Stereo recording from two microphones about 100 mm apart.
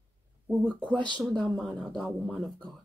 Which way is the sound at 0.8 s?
10° left (ahead or behind).